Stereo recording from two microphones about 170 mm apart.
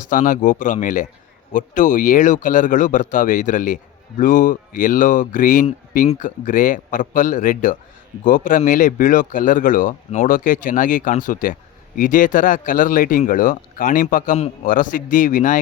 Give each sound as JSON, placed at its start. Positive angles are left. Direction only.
{"t": 0.0, "sound": "speech", "side_deg": 50}
{"t": 14.3, "sound": "a man's voice", "side_deg": 40}
{"t": 14.7, "sound": "speech", "side_deg": 55}